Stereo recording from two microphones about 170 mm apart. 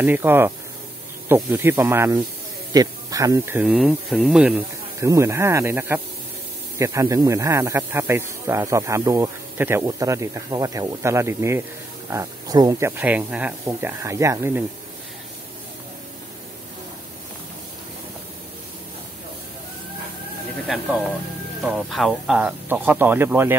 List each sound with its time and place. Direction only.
0.0 s speech: 10° right (ahead or behind)
3.6 s speech: 5° right (ahead or behind)
5.0 s speech: 15° right (ahead or behind)
20.7 s speech: centre (ahead or behind)